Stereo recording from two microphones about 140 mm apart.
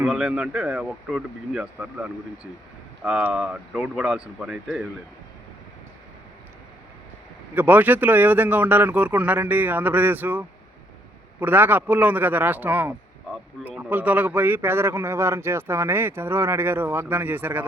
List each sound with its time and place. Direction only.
0.0 s a man's voice: 5° right (ahead or behind)
7.5 s a man's voice: 10° right (ahead or behind)